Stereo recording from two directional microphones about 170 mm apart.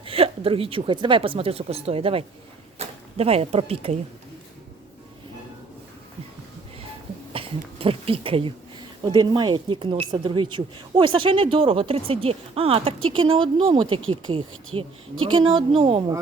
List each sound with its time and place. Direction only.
0.0 s speech: 35° right (ahead or behind)
7.3 s speech: 35° right (ahead or behind)